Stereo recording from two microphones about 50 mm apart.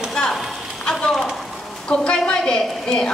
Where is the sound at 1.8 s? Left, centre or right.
Centre.